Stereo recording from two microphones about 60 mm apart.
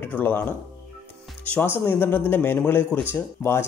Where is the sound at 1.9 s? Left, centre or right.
Left.